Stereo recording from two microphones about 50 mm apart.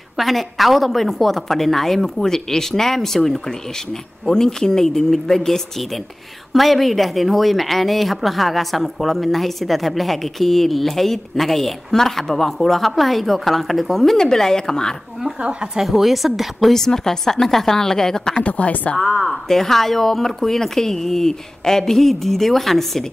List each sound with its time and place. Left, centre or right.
0.2 s a woman's voice: centre
15.4 s a woman's voice: centre
15.8 s a woman's voice: centre
18.4 s a woman's voice: left
19.2 s a woman's voice: centre